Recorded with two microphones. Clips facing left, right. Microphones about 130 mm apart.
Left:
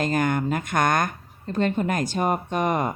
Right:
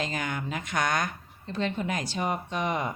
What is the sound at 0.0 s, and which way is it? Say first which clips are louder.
A woman's voice: left 9 dB; 50° left (ahead or behind).